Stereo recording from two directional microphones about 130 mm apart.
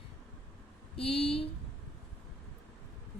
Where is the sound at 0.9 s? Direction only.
45° left (ahead or behind).